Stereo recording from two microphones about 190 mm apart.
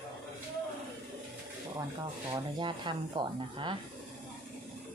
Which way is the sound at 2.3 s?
25° right (ahead or behind).